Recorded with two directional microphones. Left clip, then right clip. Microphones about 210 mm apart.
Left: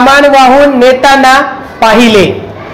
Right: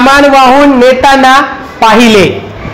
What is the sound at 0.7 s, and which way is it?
A man's voice, 35° right (ahead or behind).